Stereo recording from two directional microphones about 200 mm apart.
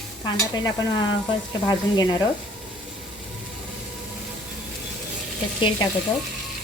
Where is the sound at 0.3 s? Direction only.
20° left (ahead or behind).